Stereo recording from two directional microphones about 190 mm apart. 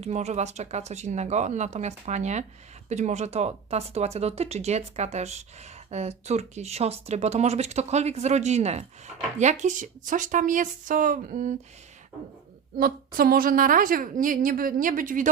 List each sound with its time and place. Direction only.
0.0 s a woman's voice: 35° right (ahead or behind)
12.7 s a woman's voice: 50° right (ahead or behind)